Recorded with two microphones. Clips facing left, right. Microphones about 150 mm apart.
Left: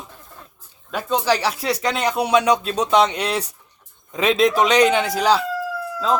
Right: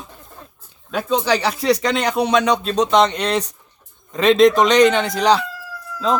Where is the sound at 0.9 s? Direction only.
Centre (ahead or behind).